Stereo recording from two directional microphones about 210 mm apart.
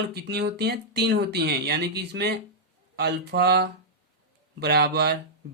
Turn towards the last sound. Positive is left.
turn(degrees=-50)  # may be behind; listen again after turning